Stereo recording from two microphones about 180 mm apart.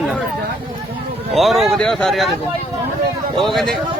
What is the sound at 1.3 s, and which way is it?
Speech, centre (ahead or behind).